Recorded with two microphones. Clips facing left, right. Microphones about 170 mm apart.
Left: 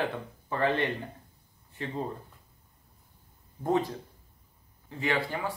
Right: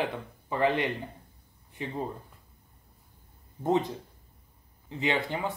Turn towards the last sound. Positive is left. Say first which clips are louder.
# right 1 dB
turn(degrees=-20)  # may be behind; listen again after turning